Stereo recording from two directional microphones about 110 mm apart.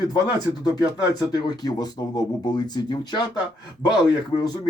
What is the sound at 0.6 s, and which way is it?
Speech, 35° left (ahead or behind).